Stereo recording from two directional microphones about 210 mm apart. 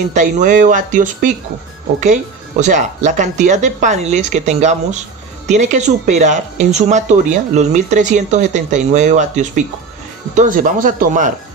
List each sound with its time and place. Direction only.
0.1 s speech: 35° right (ahead or behind)
2.6 s speech: 35° right (ahead or behind)